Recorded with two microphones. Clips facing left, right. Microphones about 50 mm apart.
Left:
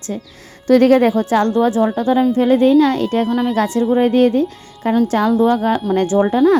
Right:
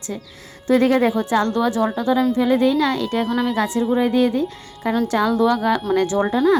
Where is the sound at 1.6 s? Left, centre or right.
Left.